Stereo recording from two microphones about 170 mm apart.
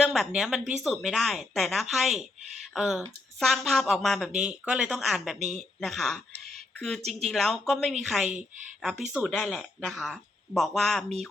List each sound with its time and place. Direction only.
0.0 s speech: centre (ahead or behind)